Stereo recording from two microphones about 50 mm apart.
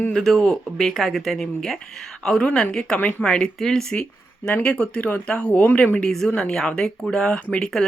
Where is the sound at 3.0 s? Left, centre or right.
Left.